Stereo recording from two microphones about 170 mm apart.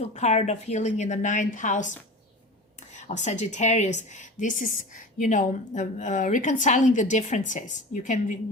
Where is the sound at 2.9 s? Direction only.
45° left (ahead or behind).